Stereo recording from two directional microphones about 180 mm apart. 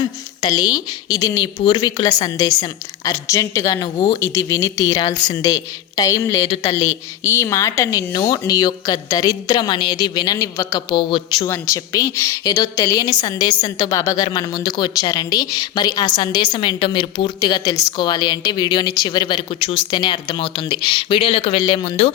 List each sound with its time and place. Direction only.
0.0 s a woman's voice: 25° left (ahead or behind)